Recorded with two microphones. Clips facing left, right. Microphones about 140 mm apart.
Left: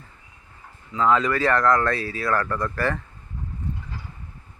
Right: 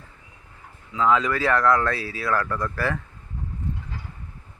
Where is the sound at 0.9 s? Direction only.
Centre (ahead or behind).